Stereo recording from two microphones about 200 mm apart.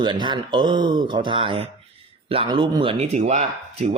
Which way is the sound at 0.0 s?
25° right (ahead or behind).